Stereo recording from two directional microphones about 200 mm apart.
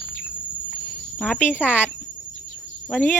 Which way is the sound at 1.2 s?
5° left (ahead or behind).